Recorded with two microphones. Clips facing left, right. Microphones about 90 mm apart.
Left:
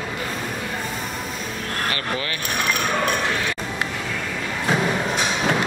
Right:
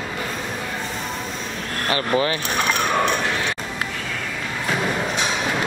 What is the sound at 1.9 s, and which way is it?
Vehicle, 25° right (ahead or behind).